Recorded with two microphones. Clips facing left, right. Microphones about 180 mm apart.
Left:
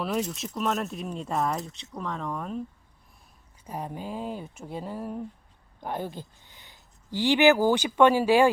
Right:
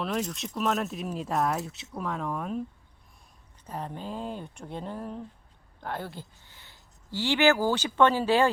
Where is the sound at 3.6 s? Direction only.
10° left (ahead or behind).